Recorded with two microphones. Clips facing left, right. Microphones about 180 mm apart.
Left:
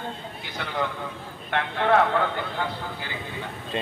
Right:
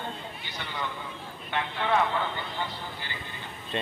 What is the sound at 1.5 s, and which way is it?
A man's voice, 65° left (ahead or behind).